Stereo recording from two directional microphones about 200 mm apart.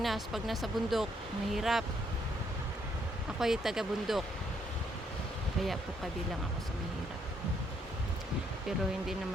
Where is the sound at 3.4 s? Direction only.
Centre (ahead or behind).